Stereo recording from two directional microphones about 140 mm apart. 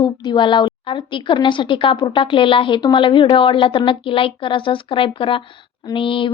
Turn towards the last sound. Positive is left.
turn(degrees=35)  # may be behind; listen again after turning